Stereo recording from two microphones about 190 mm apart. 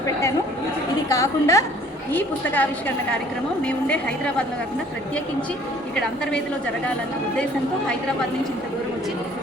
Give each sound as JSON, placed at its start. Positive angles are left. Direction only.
{"t": 1.1, "sound": "a woman's voice", "side_deg": 15}